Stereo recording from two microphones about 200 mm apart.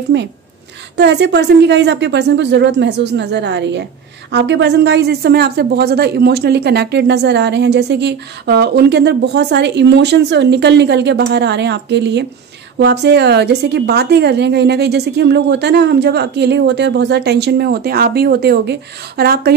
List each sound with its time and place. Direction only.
0.1 s a woman's voice: 60° right (ahead or behind)